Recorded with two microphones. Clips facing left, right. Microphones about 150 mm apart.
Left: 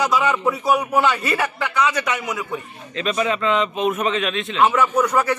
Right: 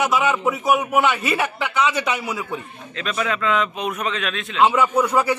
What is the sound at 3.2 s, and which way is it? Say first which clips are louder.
A man's voice: left 1 dB; 5° left (ahead or behind).